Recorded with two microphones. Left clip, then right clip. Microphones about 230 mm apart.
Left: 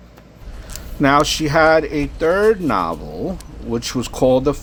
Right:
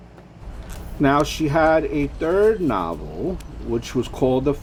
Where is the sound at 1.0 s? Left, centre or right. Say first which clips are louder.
Left 4 dB; left.